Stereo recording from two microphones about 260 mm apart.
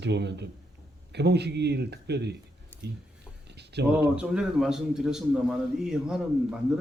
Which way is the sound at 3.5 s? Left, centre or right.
Right.